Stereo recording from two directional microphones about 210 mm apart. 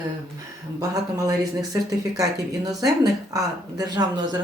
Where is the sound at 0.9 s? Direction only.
15° right (ahead or behind).